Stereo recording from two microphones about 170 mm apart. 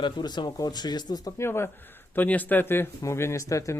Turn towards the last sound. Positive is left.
turn(degrees=20)  # may be behind; listen again after turning